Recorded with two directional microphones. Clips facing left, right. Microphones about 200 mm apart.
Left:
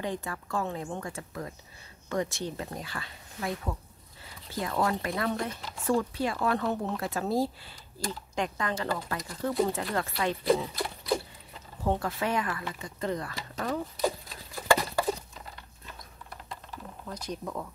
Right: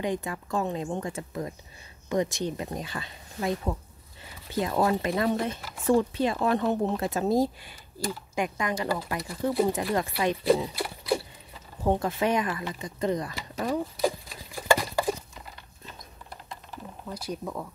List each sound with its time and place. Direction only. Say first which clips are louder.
0.0 s speech: right 4 dB; 15° right (ahead or behind)
17.1 s speech: right 2 dB; 10° right (ahead or behind)